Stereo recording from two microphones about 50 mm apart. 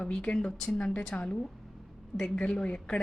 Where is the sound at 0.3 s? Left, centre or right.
Centre.